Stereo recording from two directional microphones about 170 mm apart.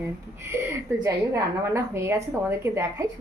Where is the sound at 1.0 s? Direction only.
15° right (ahead or behind).